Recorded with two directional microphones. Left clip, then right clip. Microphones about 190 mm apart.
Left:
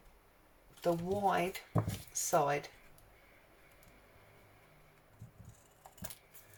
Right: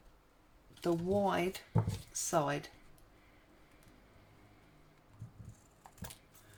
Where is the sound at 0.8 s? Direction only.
40° right (ahead or behind).